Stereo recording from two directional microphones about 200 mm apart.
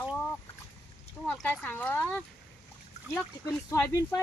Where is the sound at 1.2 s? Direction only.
5° left (ahead or behind).